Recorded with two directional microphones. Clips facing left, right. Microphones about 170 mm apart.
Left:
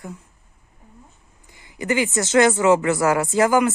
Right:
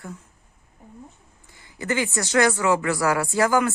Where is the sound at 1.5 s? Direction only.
15° left (ahead or behind).